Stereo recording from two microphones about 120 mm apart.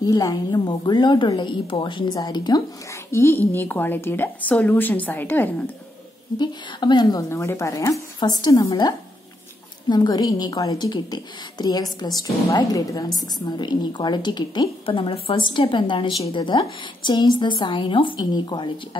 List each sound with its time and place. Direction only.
0.0 s a woman's voice: 30° left (ahead or behind)
3.1 s a woman's voice: 20° left (ahead or behind)
6.3 s a woman's voice: 40° left (ahead or behind)
7.2 s a woman's voice: 25° left (ahead or behind); by 18.7 s 40° left (ahead or behind)